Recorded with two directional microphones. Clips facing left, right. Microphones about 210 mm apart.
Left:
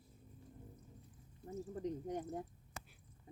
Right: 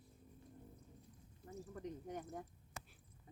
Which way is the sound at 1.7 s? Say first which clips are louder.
Left 6 dB; 35° left (ahead or behind).